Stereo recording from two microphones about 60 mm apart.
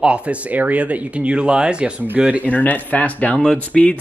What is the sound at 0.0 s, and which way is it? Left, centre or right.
Speech, centre.